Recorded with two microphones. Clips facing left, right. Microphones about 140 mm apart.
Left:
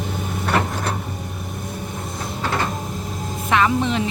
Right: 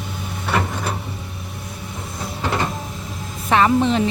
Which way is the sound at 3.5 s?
35° right (ahead or behind).